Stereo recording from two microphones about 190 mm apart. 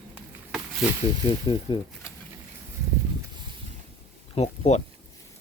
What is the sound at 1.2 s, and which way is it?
Speech, 25° left (ahead or behind).